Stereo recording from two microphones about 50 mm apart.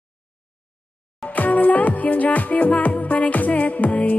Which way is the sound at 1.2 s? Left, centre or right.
Left.